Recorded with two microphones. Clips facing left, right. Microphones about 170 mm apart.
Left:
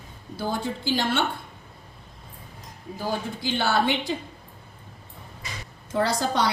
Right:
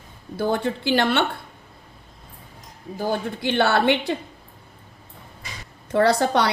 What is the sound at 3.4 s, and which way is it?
Speech, 65° right (ahead or behind).